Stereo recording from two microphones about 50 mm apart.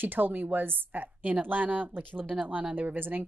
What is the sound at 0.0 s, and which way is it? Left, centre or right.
Speech, right.